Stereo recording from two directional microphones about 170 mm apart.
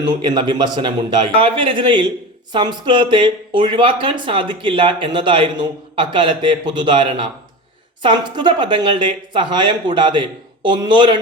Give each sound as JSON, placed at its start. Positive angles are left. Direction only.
{"t": 0.0, "sound": "speech", "side_deg": -25}